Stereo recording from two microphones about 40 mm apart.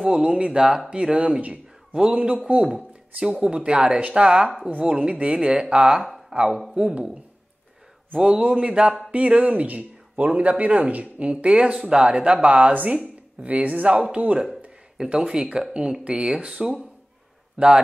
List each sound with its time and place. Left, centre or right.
0.0 s speech: right
8.2 s speech: right
15.1 s speech: centre
16.6 s speech: centre